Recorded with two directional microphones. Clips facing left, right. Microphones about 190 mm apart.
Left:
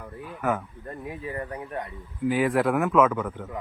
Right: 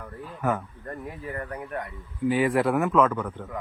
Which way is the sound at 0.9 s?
20° left (ahead or behind).